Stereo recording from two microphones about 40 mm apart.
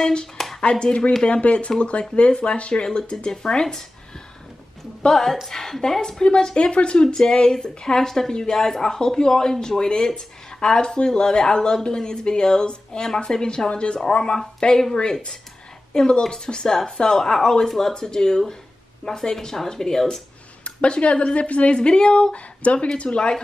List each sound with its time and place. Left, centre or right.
0.6 s speech: left
2.7 s speech: centre
5.0 s speech: centre; by 14.8 s left
15.9 s speech: centre
20.6 s speech: left
21.7 s speech: left